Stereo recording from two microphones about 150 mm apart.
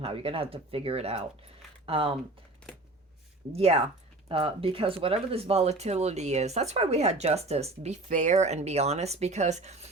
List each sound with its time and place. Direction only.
0.0 s speech: 40° right (ahead or behind)
3.5 s speech: 45° right (ahead or behind)